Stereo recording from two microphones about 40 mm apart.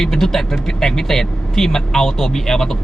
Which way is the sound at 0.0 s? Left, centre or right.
Centre.